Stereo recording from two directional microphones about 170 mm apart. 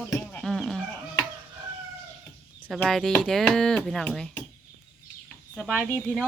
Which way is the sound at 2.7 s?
Centre (ahead or behind).